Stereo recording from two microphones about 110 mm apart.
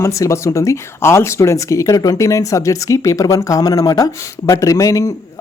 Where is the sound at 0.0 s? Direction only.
25° left (ahead or behind).